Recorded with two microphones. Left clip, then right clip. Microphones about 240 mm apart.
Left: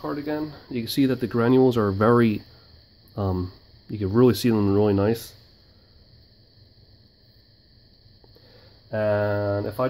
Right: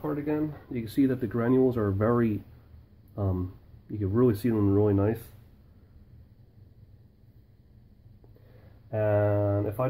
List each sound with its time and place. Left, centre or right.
0.0 s speech: left
8.9 s speech: left